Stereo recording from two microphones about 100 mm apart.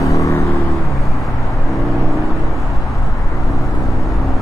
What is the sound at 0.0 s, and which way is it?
Vehicle, 30° left (ahead or behind).